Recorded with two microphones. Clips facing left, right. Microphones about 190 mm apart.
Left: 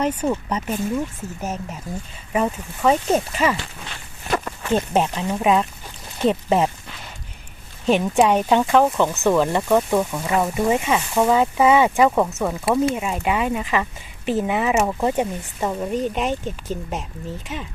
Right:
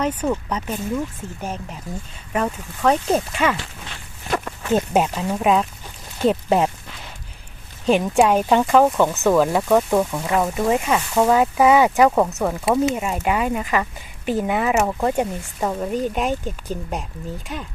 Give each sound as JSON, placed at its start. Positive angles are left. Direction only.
{"t": 0.0, "sound": "speech", "side_deg": 10}
{"t": 4.7, "sound": "speech", "side_deg": -5}
{"t": 7.9, "sound": "speech", "side_deg": 0}